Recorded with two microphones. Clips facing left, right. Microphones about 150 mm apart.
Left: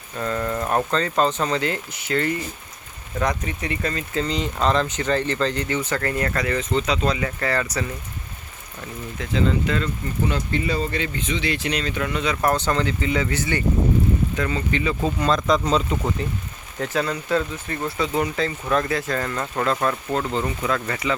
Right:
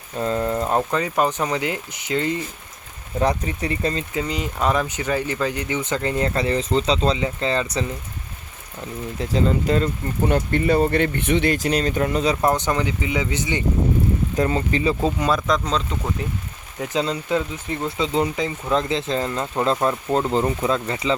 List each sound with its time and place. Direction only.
0.2 s speech: 25° right (ahead or behind)
3.2 s speech: 30° right (ahead or behind)
4.1 s speech: 10° right (ahead or behind)
9.1 s speech: 35° right (ahead or behind)
10.2 s speech: 50° right (ahead or behind); by 12.4 s 35° right (ahead or behind)
12.4 s speech: 20° right (ahead or behind)
14.3 s speech: 35° right (ahead or behind)
15.2 s speech: 10° right (ahead or behind)
16.8 s speech: 20° right (ahead or behind)